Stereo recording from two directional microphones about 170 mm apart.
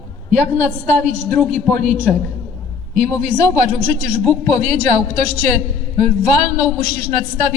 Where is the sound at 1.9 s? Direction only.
10° right (ahead or behind).